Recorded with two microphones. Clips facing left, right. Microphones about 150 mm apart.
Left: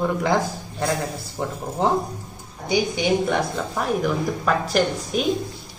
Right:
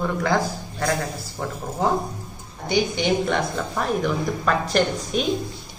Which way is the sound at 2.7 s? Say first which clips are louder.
Left 1 dB; 5° left (ahead or behind).